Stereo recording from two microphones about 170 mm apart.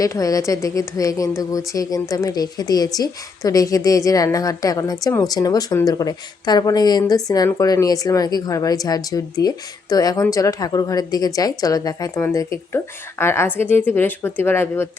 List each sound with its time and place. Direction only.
0.0 s a woman's voice: 20° left (ahead or behind)